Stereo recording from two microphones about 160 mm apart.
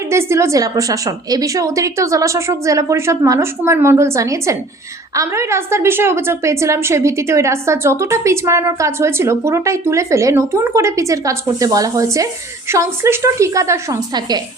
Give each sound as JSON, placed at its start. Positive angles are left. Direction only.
{"t": 0.1, "sound": "a woman's voice", "side_deg": -15}